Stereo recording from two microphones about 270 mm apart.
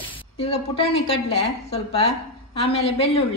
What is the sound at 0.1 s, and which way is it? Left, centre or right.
A woman's voice, left.